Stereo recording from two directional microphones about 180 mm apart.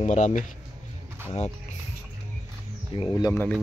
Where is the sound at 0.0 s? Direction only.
40° left (ahead or behind).